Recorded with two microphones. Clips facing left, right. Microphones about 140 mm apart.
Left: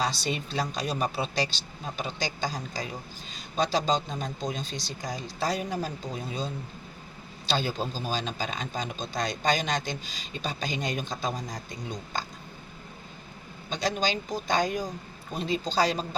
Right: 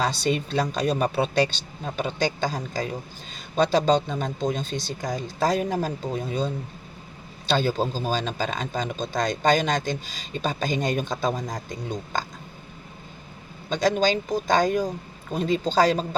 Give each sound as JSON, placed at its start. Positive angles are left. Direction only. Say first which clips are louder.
{"t": 0.0, "sound": "speech", "louder": "right 5 dB", "side_deg": -50}
{"t": 13.7, "sound": "speech", "louder": "right 7 dB", "side_deg": -50}